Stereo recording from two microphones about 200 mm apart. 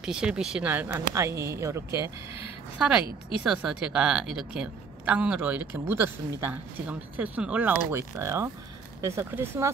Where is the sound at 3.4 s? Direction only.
5° right (ahead or behind).